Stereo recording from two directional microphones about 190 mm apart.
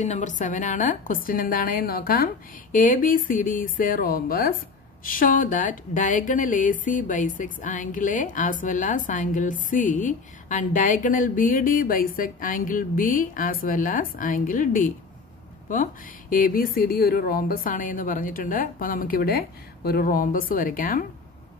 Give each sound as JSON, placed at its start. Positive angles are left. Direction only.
{"t": 0.0, "sound": "speech", "side_deg": 40}